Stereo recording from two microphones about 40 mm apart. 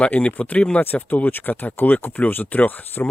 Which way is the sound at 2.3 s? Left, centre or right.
Left.